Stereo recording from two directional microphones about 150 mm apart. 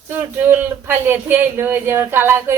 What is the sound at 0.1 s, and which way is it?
A man's voice, 15° right (ahead or behind).